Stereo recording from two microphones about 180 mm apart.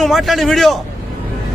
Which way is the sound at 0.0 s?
Centre (ahead or behind).